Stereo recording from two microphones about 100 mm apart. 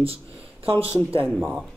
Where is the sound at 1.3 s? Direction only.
Centre (ahead or behind).